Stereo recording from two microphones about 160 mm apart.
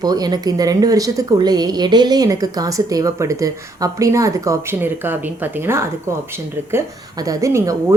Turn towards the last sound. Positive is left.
turn(degrees=-20)  # may be behind; listen again after turning